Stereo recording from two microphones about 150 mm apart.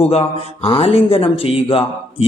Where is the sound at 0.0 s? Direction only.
40° left (ahead or behind).